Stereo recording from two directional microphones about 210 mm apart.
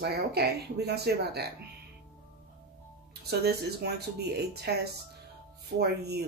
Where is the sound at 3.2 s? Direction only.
50° right (ahead or behind).